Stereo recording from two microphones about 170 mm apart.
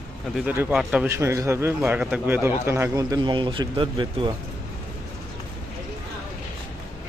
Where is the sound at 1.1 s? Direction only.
15° right (ahead or behind).